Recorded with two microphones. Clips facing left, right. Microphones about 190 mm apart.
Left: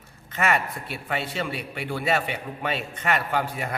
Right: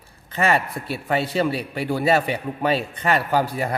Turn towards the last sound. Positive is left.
turn(degrees=-35)  # may be behind; listen again after turning